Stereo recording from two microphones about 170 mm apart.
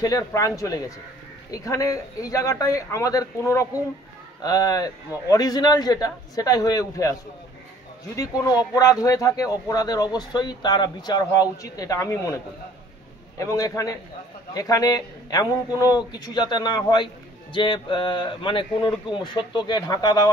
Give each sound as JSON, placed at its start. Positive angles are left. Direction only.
{"t": 0.0, "sound": "a man's voice", "side_deg": 20}
{"t": 8.2, "sound": "a man's voice", "side_deg": 20}
{"t": 13.4, "sound": "a man's voice", "side_deg": 20}